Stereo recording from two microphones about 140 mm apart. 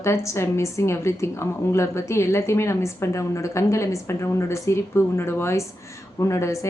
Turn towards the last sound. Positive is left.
turn(degrees=20)  # may be behind; listen again after turning